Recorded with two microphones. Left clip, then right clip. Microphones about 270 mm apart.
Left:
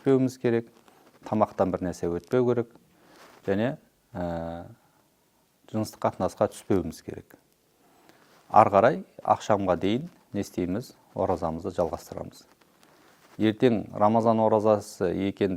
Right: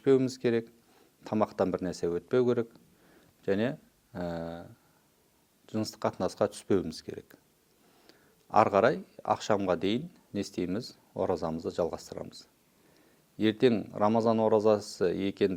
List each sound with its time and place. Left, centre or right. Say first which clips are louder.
0.0 s speech: left 2 dB; left